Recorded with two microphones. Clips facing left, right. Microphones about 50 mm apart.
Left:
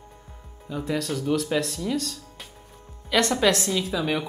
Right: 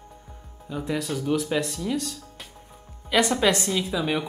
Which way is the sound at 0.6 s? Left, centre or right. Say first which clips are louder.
Left 1 dB; centre.